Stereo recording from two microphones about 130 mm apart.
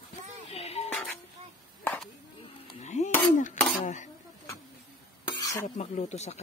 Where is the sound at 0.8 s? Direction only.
10° left (ahead or behind).